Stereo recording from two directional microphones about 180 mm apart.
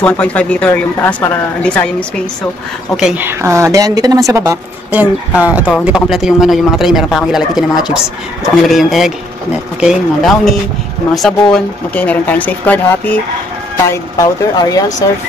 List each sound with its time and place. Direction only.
0.0 s speech: 10° left (ahead or behind)
3.0 s speech: 5° right (ahead or behind); by 15.0 s 20° left (ahead or behind)